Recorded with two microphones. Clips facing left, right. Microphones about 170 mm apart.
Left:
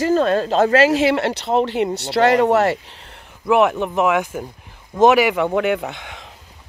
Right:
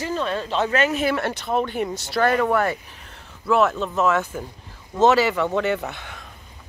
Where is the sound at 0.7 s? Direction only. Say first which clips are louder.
Left 6 dB; 90° left.